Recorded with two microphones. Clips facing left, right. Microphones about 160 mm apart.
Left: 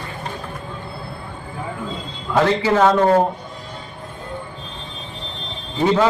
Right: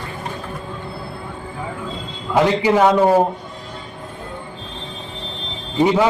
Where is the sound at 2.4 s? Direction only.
15° right (ahead or behind).